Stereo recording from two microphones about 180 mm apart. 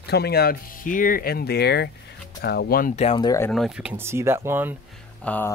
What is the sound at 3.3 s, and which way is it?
Speech, 15° left (ahead or behind).